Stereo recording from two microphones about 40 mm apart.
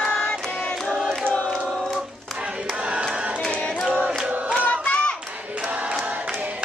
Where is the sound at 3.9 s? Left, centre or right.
Right.